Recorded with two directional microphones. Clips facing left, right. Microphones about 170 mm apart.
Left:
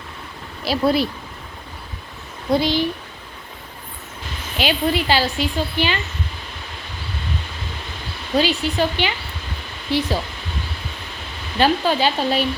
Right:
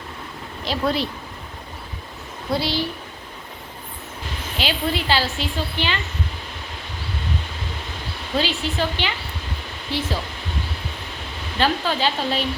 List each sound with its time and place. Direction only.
0.6 s speech: 10° left (ahead or behind)
2.5 s speech: 15° left (ahead or behind)
4.5 s speech: 15° left (ahead or behind)
8.4 s speech: 15° left (ahead or behind)
11.5 s speech: 15° left (ahead or behind)